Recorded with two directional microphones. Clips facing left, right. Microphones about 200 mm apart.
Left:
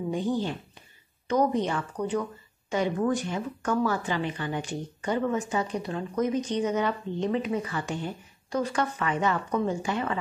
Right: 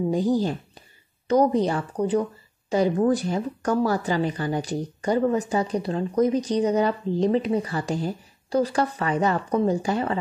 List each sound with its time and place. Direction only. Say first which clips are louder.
0.1 s speech: right 3 dB; 40° right (ahead or behind)